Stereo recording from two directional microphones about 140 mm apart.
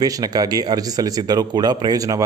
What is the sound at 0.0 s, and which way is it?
Speech, 25° right (ahead or behind).